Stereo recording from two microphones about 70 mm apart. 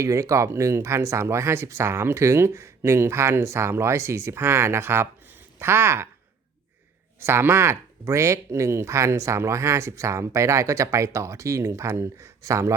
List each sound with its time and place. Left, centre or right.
0.0 s speech: right
7.2 s speech: right